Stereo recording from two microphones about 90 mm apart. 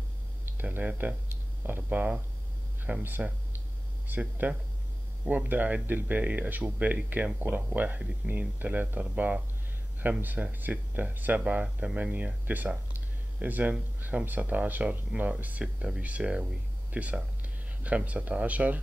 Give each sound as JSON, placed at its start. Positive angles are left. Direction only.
{"t": 0.6, "sound": "speech", "side_deg": -20}